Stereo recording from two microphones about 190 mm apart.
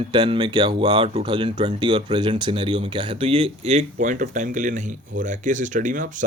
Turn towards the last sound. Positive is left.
turn(degrees=-40)  # may be behind; listen again after turning